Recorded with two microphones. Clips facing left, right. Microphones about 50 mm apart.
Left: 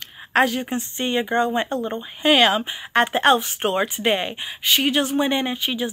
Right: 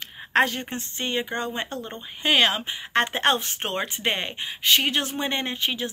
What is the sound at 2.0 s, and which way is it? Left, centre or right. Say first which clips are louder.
Speech: left 4 dB; centre.